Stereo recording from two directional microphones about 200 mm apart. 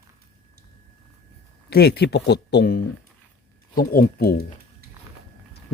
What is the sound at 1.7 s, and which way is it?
Speech, 55° left (ahead or behind).